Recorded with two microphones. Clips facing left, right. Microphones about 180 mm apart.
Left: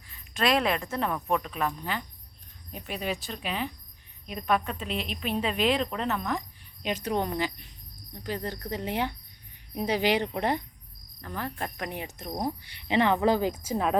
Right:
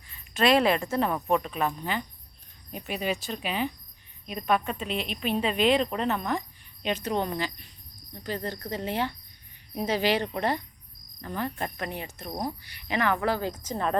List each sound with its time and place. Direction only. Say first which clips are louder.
0.1 s a woman's voice: right 3 dB; centre (ahead or behind)
6.8 s speech: right 1 dB; 10° left (ahead or behind)
11.3 s a woman's voice: right 3 dB; centre (ahead or behind)
11.8 s speech: even; 15° left (ahead or behind)